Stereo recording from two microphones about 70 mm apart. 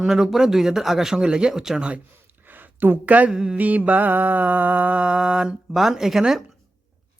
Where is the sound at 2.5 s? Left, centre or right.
Right.